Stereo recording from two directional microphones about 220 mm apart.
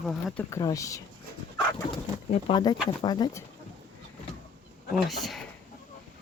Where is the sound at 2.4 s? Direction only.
20° left (ahead or behind).